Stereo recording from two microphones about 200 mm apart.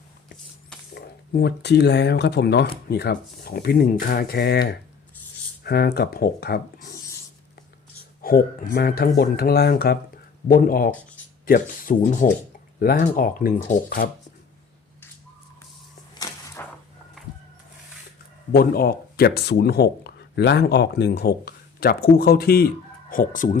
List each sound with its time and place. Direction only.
0.9 s speech: 55° left (ahead or behind)
8.2 s speech: 45° left (ahead or behind)
16.1 s a sound: 20° left (ahead or behind)
18.5 s speech: 50° left (ahead or behind)